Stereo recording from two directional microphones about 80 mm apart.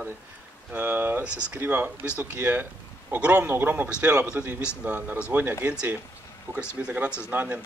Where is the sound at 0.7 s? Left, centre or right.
Right.